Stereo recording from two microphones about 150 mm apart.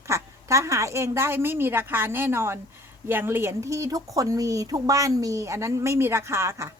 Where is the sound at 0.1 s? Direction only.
20° right (ahead or behind).